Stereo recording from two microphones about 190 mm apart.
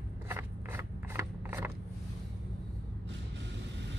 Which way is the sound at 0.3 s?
10° right (ahead or behind).